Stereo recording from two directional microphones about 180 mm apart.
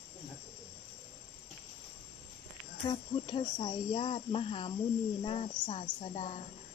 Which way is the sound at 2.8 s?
25° left (ahead or behind).